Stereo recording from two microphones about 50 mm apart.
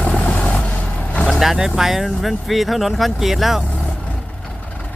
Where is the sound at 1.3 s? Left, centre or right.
Centre.